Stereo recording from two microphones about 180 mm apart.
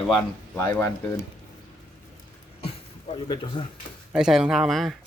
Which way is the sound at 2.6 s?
30° left (ahead or behind).